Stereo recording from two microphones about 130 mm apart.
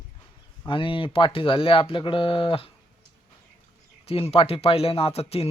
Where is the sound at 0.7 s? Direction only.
40° left (ahead or behind).